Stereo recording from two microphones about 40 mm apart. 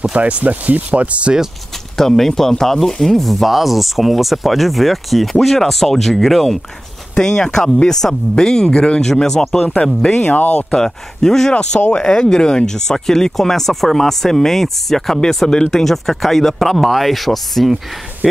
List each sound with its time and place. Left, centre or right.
0.1 s speech: right
2.0 s speech: centre
7.2 s speech: centre
10.1 s speech: left
10.7 s speech: centre
18.2 s speech: centre